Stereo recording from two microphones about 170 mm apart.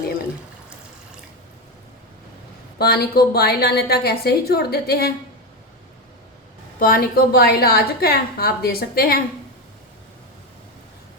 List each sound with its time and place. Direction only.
2.7 s a woman's voice: 70° left (ahead or behind)
6.7 s a woman's voice: 60° left (ahead or behind)